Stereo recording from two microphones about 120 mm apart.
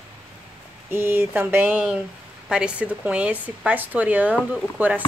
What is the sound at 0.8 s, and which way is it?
Speech, 20° right (ahead or behind).